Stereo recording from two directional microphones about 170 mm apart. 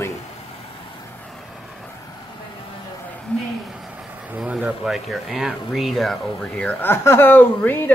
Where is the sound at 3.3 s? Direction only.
5° left (ahead or behind).